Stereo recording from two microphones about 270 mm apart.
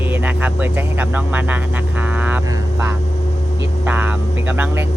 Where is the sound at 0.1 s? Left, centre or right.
Centre.